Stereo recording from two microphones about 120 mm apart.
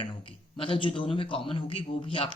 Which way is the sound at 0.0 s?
45° left (ahead or behind).